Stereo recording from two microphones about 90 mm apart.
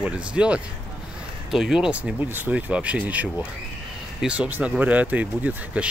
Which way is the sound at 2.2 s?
20° right (ahead or behind).